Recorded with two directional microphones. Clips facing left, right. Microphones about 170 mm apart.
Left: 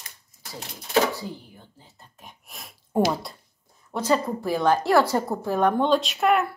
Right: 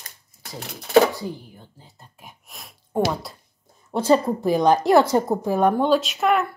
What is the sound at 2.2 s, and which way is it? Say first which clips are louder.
Speech: even; centre (ahead or behind).